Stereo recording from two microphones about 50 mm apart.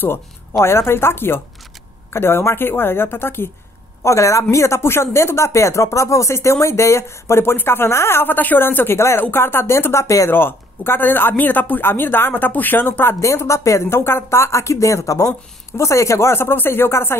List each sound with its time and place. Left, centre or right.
0.0 s speech: left
4.0 s speech: left
7.5 s speech: left
8.9 s speech: left
9.3 s speech: left
10.3 s speech: left
13.2 s speech: left
15.8 s speech: left